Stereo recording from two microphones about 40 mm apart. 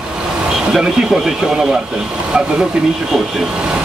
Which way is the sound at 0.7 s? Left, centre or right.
Centre.